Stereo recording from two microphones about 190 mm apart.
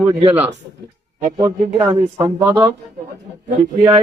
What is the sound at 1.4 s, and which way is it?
Speech, 15° right (ahead or behind).